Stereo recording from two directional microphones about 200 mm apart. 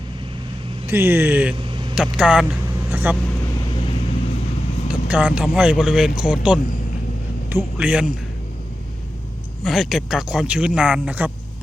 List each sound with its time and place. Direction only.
0.9 s speech: 10° right (ahead or behind)
1.5 s vehicle: 25° right (ahead or behind)
2.0 s speech: 5° right (ahead or behind)
3.8 s vehicle: 25° left (ahead or behind)
4.9 s speech: 5° right (ahead or behind)
9.6 s speech: centre (ahead or behind)